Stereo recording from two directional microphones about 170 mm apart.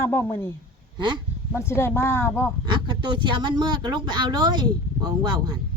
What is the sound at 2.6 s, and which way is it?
Speech, 25° right (ahead or behind).